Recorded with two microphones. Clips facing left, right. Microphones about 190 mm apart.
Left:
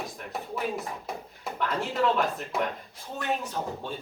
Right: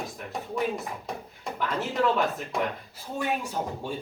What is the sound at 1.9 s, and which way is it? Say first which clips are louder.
Speech: right 1 dB; centre (ahead or behind).